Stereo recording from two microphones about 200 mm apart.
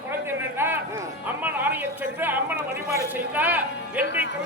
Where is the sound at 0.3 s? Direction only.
10° right (ahead or behind).